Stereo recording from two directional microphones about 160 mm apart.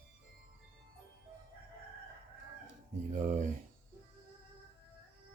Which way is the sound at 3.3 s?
50° right (ahead or behind).